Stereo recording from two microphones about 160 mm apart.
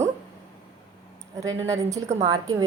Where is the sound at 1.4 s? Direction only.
20° right (ahead or behind).